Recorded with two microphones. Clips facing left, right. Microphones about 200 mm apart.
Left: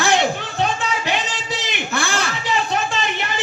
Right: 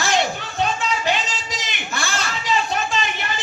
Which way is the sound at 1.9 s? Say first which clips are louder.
Left 3 dB; 55° left (ahead or behind).